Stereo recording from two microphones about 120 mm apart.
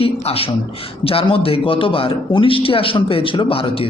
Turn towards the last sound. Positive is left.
turn(degrees=50)  # may be behind; listen again after turning